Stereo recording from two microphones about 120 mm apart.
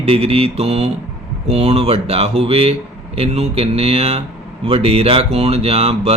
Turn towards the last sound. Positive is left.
turn(degrees=-55)  # may be behind; listen again after turning